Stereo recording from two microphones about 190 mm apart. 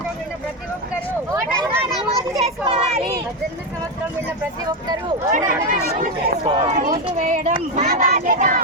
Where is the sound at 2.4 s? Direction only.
30° right (ahead or behind).